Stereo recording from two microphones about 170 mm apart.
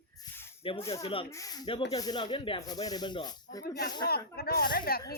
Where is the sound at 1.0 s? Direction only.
30° left (ahead or behind).